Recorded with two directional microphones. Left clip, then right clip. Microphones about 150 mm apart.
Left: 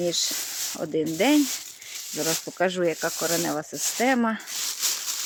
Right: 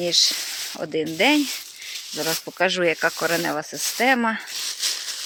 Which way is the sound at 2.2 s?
15° left (ahead or behind).